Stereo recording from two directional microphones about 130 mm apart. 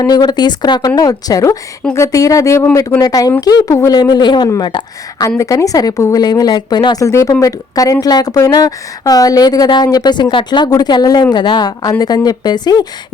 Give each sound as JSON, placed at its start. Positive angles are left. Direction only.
{"t": 0.0, "sound": "speech", "side_deg": 30}